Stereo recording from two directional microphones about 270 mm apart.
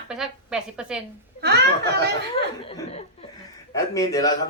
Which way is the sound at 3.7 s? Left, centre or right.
Centre.